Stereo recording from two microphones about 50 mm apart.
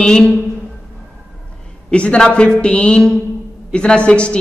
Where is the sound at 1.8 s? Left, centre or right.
Centre.